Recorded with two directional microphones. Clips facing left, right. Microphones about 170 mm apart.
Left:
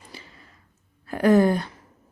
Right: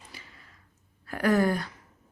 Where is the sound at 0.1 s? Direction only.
30° left (ahead or behind).